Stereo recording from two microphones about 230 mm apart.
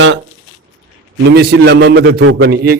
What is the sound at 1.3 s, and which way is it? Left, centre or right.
A man's voice, right.